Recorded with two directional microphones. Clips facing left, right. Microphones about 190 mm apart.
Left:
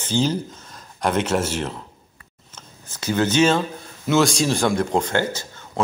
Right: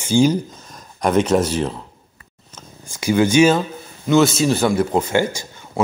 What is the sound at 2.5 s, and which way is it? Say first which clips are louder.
Purr: right 4 dB; 10° right (ahead or behind).